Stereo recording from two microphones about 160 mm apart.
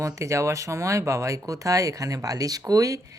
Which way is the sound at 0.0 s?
20° right (ahead or behind).